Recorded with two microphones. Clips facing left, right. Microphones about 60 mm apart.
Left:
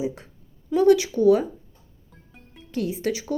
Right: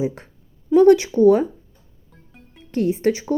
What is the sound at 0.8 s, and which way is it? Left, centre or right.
Speech, right.